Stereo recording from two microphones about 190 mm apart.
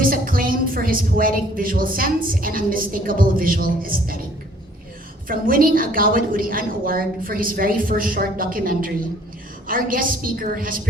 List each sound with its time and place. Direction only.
0.0 s a woman's voice: 50° right (ahead or behind)
5.3 s a woman's voice: 50° right (ahead or behind)